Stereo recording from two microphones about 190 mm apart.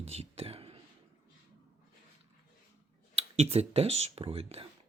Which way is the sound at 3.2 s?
35° right (ahead or behind).